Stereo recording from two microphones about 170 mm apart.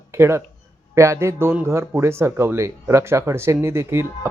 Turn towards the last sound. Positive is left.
turn(degrees=-15)  # may be behind; listen again after turning